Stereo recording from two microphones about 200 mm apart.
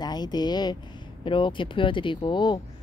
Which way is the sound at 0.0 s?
20° left (ahead or behind).